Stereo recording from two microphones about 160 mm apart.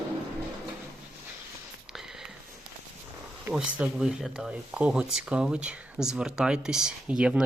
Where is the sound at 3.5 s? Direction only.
5° right (ahead or behind).